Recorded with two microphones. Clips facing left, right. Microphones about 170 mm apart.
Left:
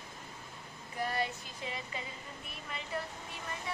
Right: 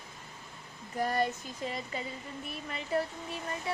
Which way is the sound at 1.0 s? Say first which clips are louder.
Right 5 dB; 45° right (ahead or behind).